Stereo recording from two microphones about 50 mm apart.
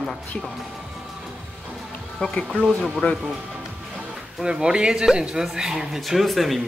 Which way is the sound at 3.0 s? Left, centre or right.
Left.